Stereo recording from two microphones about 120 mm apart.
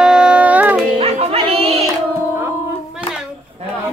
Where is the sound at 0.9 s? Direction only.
55° right (ahead or behind).